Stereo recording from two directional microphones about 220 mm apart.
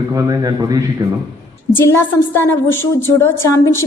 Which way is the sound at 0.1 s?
15° right (ahead or behind).